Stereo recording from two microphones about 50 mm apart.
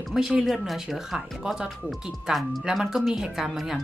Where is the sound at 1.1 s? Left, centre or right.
Centre.